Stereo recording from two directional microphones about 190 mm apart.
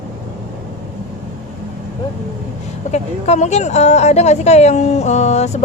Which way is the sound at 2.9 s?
35° left (ahead or behind).